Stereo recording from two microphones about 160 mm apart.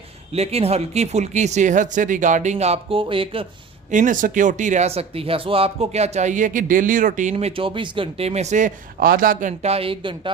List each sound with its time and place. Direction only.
0.3 s speech: 40° right (ahead or behind)
3.9 s speech: 55° right (ahead or behind); by 10.3 s 30° right (ahead or behind)